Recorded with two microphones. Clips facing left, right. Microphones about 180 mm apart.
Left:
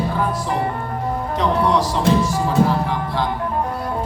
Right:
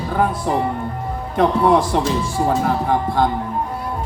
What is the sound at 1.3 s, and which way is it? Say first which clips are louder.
Speech: right 4 dB; 55° right (ahead or behind).